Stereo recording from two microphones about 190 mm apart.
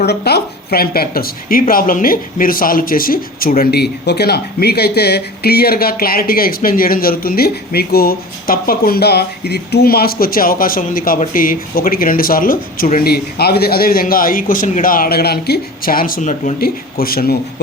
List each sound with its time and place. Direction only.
0.0 s a woman's voice: 60° left (ahead or behind)